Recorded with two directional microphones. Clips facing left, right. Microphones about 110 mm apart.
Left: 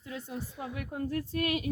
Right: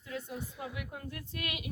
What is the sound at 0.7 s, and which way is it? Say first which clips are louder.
A woman's voice: left 8 dB; 40° left (ahead or behind).